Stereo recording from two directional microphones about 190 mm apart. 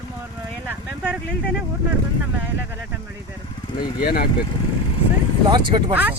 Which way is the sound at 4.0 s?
55° left (ahead or behind).